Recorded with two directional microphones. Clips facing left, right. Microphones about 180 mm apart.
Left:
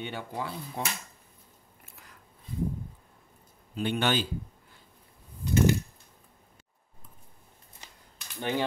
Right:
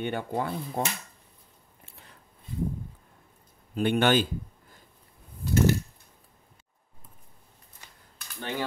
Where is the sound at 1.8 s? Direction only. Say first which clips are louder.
Right 1 dB; 30° right (ahead or behind).